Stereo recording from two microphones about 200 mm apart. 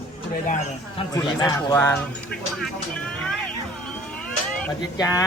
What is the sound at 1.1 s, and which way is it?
Speech, 15° left (ahead or behind).